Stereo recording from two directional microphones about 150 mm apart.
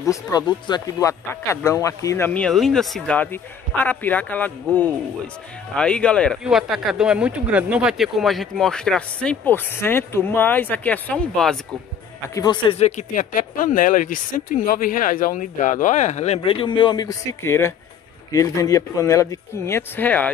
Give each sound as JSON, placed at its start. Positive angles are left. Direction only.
{"t": 0.0, "sound": "speech", "side_deg": 25}
{"t": 12.4, "sound": "speech", "side_deg": 30}
{"t": 12.7, "sound": "speech", "side_deg": 50}